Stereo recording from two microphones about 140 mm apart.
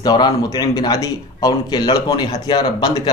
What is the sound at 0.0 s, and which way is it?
Speech, 30° left (ahead or behind).